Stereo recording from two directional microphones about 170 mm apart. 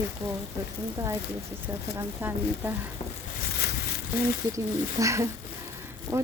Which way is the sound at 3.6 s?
65° left (ahead or behind).